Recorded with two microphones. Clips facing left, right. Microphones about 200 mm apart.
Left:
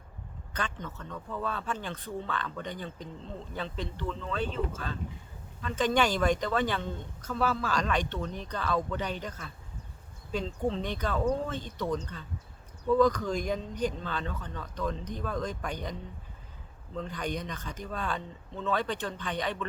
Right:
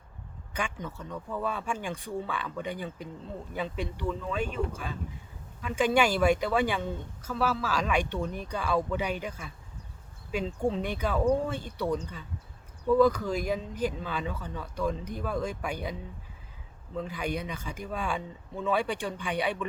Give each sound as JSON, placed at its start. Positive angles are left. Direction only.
{"t": 0.5, "sound": "speech", "side_deg": -10}